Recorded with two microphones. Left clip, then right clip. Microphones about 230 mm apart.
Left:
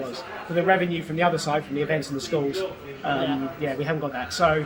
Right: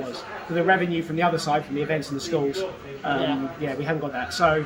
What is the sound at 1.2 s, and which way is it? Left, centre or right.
Speech, centre.